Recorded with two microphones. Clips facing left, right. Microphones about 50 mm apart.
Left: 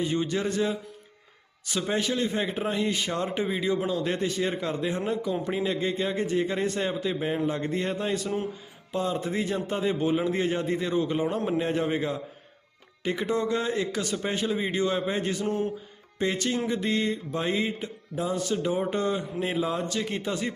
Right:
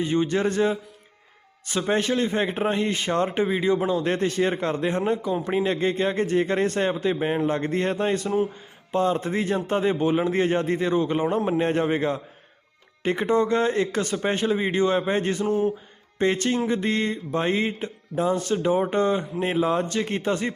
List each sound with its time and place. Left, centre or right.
0.0 s speech: right
4.0 s a man's voice: right
5.5 s speech: right
5.7 s a man's voice: right
15.4 s mantra: centre
16.1 s speech: right